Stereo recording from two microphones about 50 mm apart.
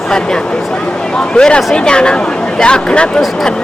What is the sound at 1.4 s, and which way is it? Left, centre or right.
Speech, centre.